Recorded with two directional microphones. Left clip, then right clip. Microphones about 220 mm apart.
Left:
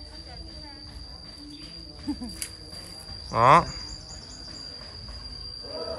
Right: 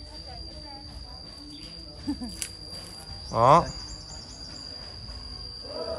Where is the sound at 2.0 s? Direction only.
Centre (ahead or behind).